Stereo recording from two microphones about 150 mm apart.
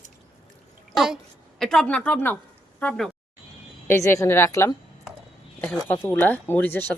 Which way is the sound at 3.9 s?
20° left (ahead or behind).